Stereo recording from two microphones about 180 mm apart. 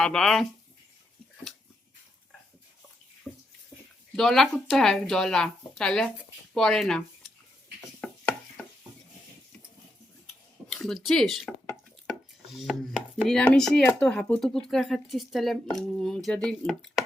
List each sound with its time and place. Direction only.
0.0 s speech: 5° left (ahead or behind)
4.1 s speech: centre (ahead or behind)
8.0 s a sound: 5° left (ahead or behind)
10.7 s speech: 5° left (ahead or behind)
12.5 s chopping: centre (ahead or behind)
13.2 s speech: 5° left (ahead or behind)